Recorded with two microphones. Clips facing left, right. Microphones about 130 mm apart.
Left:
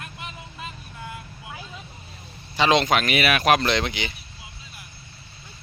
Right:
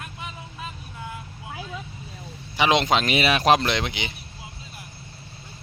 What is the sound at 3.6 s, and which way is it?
Speech, 15° right (ahead or behind).